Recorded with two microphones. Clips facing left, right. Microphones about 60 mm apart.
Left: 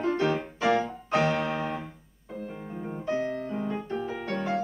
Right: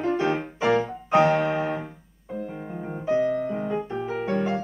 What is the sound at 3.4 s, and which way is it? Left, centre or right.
Music, centre.